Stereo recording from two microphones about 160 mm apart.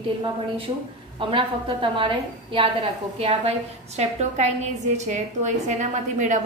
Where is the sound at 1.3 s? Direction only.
30° right (ahead or behind).